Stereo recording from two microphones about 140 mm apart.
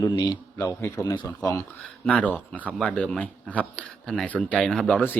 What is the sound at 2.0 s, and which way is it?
Speech, 10° left (ahead or behind).